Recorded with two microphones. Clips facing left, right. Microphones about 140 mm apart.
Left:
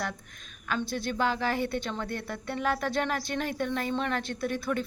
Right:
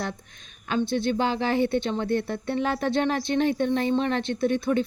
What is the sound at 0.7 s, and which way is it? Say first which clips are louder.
Speech: right 7 dB; 25° right (ahead or behind).